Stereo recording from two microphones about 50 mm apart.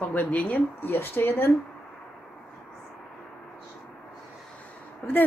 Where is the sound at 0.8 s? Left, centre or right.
Left.